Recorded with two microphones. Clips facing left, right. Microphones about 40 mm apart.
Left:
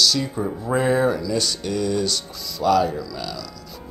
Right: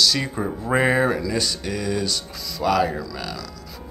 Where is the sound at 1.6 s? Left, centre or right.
Centre.